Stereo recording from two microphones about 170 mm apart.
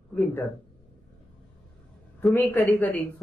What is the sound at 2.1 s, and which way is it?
Speech, 10° left (ahead or behind).